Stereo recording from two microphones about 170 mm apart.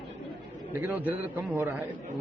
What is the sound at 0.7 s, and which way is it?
A man's voice, 10° right (ahead or behind).